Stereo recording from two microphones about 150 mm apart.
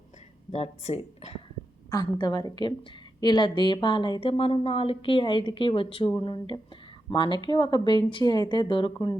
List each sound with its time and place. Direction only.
0.5 s speech: 45° left (ahead or behind)
1.9 s a woman's voice: 25° left (ahead or behind)